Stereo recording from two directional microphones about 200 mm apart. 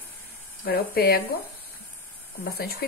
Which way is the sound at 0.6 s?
50° left (ahead or behind).